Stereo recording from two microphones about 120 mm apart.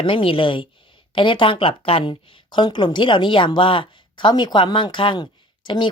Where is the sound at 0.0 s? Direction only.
45° left (ahead or behind).